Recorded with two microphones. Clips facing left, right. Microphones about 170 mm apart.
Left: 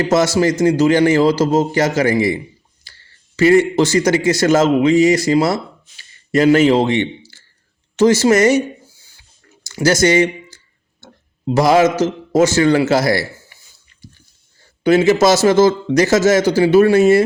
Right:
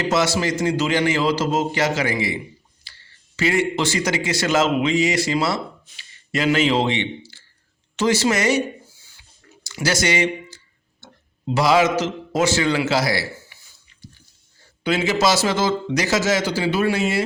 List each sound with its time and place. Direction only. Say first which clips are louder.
0.0 s a man's voice: left 6 dB; 45° left (ahead or behind)
9.6 s a man's voice: left 8 dB; 45° left (ahead or behind)
14.8 s a man's voice: left 8 dB; 45° left (ahead or behind)